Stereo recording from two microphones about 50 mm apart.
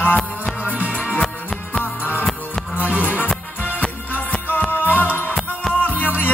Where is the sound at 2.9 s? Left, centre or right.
Left.